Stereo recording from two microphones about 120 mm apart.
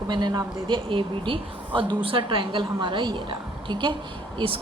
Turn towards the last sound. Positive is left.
turn(degrees=-45)  # may be behind; listen again after turning